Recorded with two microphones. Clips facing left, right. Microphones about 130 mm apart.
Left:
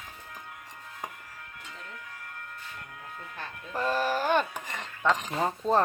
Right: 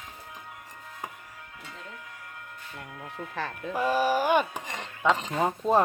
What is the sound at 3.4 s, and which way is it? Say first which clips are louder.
Speech: right 9 dB; 90° right.